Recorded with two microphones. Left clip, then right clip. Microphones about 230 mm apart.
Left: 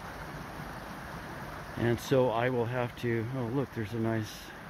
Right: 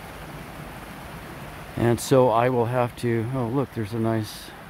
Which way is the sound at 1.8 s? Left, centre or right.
Right.